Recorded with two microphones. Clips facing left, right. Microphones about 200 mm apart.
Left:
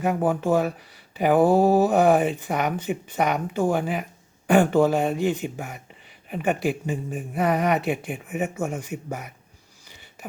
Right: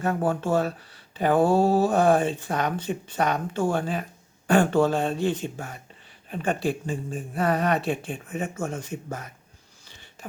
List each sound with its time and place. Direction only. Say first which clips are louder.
0.0 s speech: left 2 dB; 15° left (ahead or behind)